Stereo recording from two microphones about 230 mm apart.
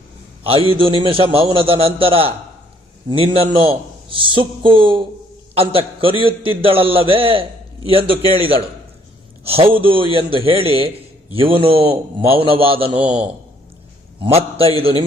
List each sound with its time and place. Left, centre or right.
0.4 s a man's voice: right
9.7 s a man's voice: right
14.2 s a man's voice: right